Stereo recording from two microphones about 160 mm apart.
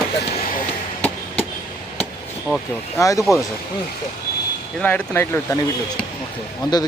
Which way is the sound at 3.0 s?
20° left (ahead or behind).